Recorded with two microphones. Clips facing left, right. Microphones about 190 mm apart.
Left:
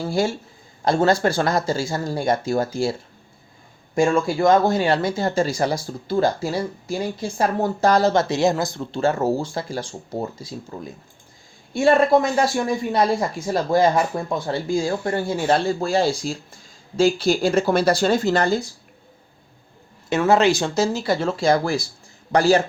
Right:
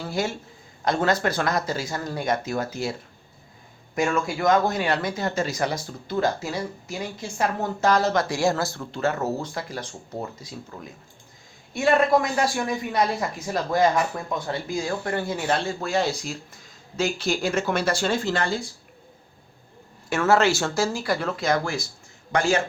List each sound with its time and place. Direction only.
0.0 s speech: 30° left (ahead or behind)
3.9 s speech: 30° left (ahead or behind)
20.1 s speech: 20° left (ahead or behind); by 22.6 s 35° left (ahead or behind)